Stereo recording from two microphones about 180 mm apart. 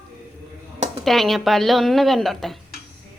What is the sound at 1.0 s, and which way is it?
A woman's voice, centre (ahead or behind).